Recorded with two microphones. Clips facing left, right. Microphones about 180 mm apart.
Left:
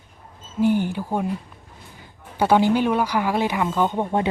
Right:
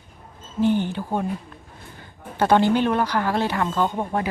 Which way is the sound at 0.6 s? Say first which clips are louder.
Left 1 dB; 10° left (ahead or behind).